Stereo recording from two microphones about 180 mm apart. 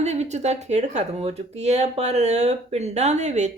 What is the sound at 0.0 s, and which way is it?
Speech, 40° right (ahead or behind).